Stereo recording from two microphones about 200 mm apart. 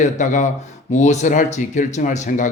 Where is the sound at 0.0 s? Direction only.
40° left (ahead or behind).